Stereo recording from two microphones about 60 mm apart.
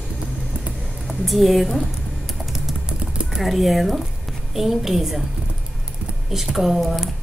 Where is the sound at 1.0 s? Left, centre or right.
Centre.